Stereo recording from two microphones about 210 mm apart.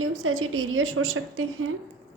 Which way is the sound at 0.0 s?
80° right.